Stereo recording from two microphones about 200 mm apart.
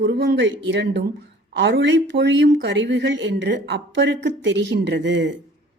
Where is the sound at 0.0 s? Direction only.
65° right (ahead or behind).